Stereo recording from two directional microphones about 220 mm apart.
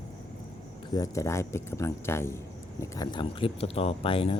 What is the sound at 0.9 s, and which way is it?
Speech, 15° left (ahead or behind).